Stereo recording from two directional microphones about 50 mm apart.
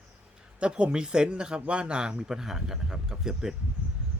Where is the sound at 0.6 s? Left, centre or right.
Right.